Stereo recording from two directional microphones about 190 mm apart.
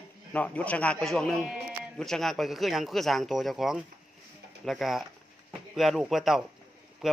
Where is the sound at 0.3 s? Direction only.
5° left (ahead or behind).